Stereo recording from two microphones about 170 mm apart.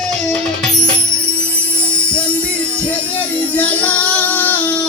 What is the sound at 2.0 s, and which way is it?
Music, 5° left (ahead or behind).